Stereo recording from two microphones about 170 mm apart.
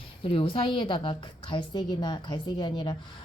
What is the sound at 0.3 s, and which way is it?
A woman's voice, 35° left (ahead or behind).